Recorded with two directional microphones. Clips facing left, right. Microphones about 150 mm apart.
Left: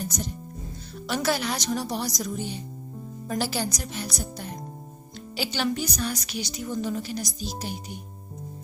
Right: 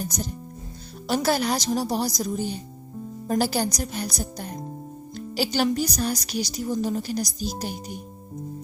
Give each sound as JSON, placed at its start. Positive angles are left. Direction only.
{"t": 1.0, "sound": "a woman's voice", "side_deg": -40}